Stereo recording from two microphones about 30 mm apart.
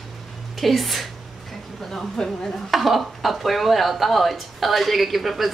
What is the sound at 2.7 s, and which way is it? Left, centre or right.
A woman's voice, centre.